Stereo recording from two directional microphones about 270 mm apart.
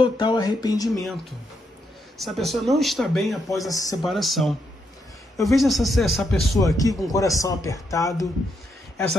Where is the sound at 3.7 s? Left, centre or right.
Centre.